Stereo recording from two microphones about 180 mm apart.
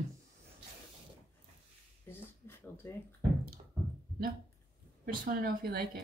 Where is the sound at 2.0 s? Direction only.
10° left (ahead or behind).